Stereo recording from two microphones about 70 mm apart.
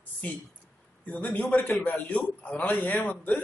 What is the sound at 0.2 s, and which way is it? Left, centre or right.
A man's voice, left.